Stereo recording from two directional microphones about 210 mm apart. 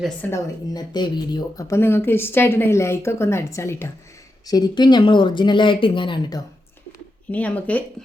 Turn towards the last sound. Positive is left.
turn(degrees=5)  # may be behind; listen again after turning